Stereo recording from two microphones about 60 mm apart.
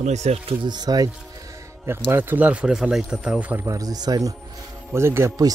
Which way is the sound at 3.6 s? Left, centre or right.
Right.